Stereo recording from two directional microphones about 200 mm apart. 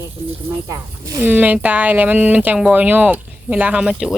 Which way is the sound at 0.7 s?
15° right (ahead or behind).